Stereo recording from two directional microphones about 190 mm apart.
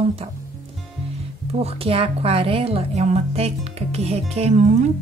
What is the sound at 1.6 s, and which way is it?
A woman's voice, 30° right (ahead or behind).